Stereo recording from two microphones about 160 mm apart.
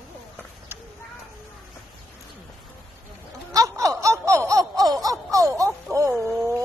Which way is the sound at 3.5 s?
20° right (ahead or behind).